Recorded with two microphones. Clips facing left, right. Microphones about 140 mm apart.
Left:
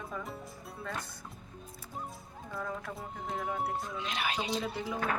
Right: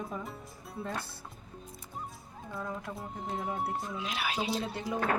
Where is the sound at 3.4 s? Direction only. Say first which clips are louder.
Left 1 dB; centre (ahead or behind).